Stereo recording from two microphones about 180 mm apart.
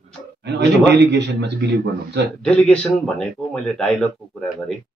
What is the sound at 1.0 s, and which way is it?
A man's voice, 75° right (ahead or behind).